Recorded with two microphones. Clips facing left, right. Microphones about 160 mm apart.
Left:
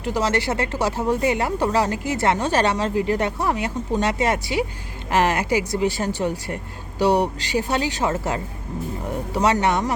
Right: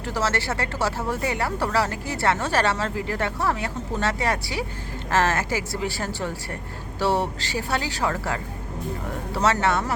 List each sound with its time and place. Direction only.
0.0 s speech: 20° left (ahead or behind)